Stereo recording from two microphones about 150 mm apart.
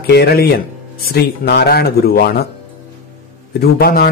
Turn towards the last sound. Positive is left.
turn(degrees=90)